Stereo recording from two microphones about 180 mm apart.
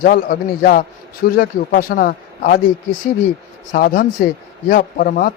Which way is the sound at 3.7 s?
45° left (ahead or behind).